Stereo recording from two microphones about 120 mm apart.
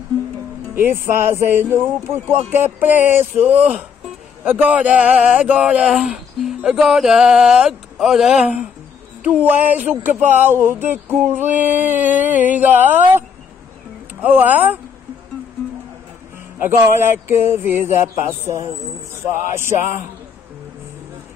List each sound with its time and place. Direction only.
0.7 s a man's voice: 15° right (ahead or behind)
14.2 s a man's voice: 15° right (ahead or behind)
16.5 s speech: 20° right (ahead or behind)